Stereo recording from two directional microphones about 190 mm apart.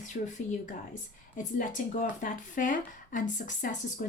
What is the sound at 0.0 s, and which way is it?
A woman's voice, 40° left (ahead or behind).